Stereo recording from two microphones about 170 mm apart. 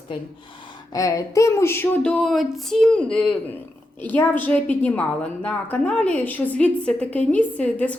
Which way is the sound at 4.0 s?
10° left (ahead or behind).